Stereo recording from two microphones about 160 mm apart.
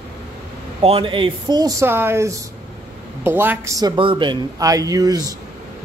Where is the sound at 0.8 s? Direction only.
35° right (ahead or behind).